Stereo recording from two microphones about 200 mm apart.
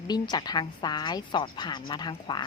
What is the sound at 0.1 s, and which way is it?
Speech, 20° left (ahead or behind).